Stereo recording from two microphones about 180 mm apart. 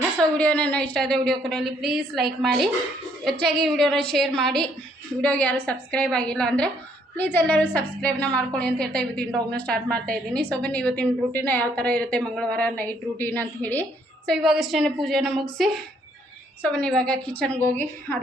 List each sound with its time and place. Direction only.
0.3 s a woman's voice: 10° left (ahead or behind)
14.3 s a woman's voice: centre (ahead or behind)